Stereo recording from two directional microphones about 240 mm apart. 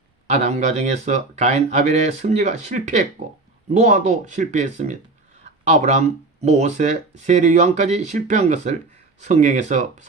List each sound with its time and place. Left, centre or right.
0.3 s speech: right